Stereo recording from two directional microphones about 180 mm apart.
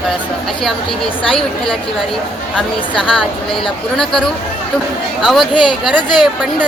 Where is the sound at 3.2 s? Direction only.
Centre (ahead or behind).